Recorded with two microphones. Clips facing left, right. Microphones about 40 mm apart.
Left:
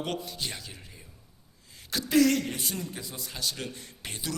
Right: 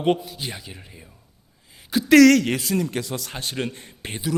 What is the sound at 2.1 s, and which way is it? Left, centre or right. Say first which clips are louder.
Speech: right 10 dB; right.